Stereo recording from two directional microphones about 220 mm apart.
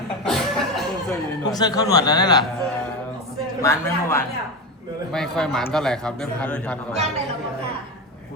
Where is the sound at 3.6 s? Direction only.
10° left (ahead or behind).